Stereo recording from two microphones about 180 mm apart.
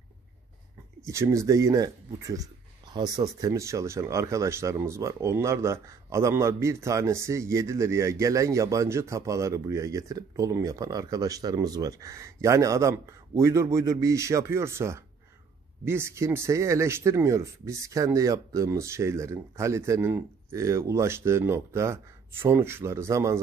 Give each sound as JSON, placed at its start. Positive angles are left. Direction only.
{"t": 1.0, "sound": "speech", "side_deg": -15}